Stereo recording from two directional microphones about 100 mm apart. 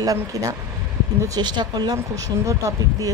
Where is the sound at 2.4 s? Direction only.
30° right (ahead or behind).